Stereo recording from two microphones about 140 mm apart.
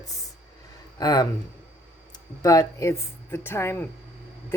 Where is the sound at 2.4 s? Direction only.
25° left (ahead or behind).